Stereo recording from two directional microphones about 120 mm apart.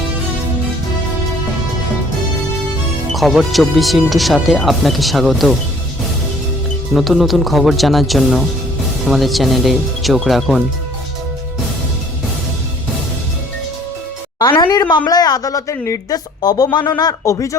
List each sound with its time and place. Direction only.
3.1 s speech: centre (ahead or behind)
6.9 s speech: centre (ahead or behind)
14.5 s a woman's voice: 35° left (ahead or behind)